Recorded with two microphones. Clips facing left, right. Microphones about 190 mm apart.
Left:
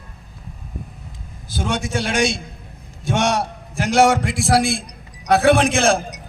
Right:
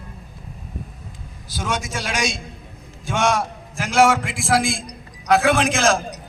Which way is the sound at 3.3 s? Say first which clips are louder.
Left 2 dB; 70° left (ahead or behind).